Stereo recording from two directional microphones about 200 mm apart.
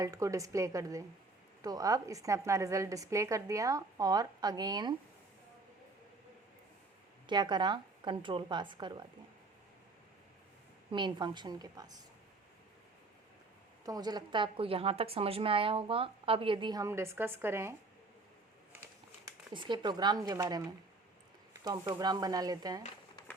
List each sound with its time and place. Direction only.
0.0 s a woman's voice: 15° right (ahead or behind)
7.3 s a woman's voice: 20° right (ahead or behind)
10.9 s a woman's voice: 20° right (ahead or behind)
13.8 s a woman's voice: 20° right (ahead or behind)
19.2 s a woman's voice: 20° right (ahead or behind)